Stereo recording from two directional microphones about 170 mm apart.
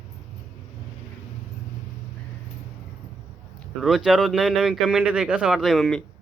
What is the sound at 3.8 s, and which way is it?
Speech, centre (ahead or behind).